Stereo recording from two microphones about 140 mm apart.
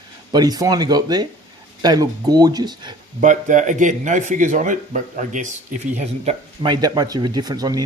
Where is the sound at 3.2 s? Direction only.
60° right (ahead or behind).